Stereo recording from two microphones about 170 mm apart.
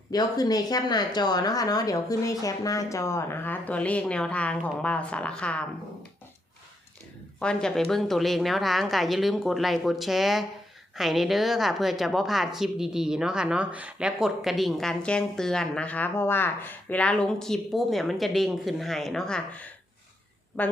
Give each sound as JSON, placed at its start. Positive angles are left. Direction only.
{"t": 0.1, "sound": "speech", "side_deg": 25}
{"t": 7.3, "sound": "a woman's voice", "side_deg": 5}